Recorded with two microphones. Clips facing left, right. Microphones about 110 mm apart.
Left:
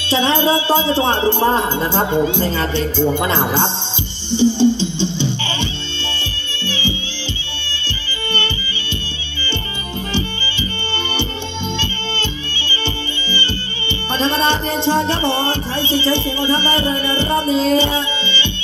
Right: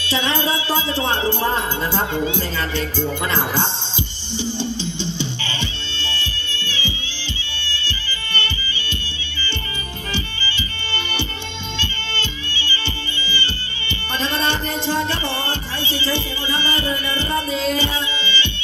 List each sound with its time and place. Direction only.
0.1 s music: 25° left (ahead or behind)
11.8 s music: 20° left (ahead or behind)